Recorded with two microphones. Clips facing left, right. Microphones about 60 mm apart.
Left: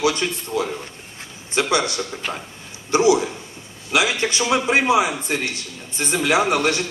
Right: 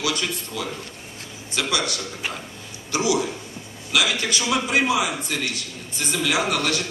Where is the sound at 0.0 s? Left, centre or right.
Left.